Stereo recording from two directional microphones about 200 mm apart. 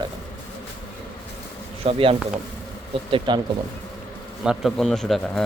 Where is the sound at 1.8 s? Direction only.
30° right (ahead or behind).